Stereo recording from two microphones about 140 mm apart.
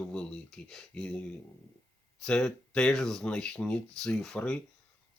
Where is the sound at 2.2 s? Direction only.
5° left (ahead or behind).